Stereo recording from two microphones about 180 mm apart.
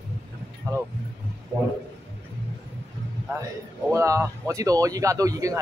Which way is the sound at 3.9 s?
15° right (ahead or behind).